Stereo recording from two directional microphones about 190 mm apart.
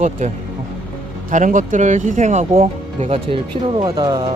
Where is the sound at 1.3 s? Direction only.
40° right (ahead or behind).